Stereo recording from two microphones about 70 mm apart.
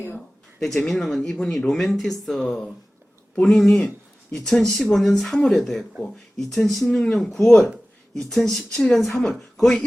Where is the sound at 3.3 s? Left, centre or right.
Centre.